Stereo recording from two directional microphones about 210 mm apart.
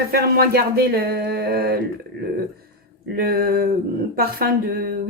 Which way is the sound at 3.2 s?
45° right (ahead or behind).